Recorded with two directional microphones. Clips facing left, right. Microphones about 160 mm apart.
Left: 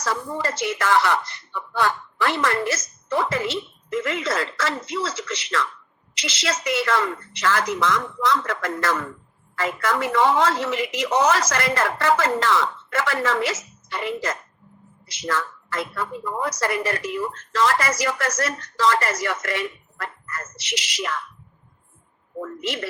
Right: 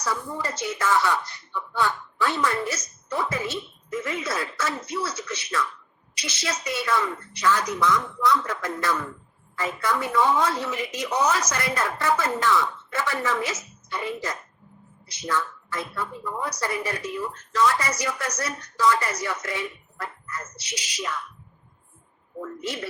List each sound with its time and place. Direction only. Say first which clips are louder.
0.0 s a woman's voice: left 3 dB; 90° left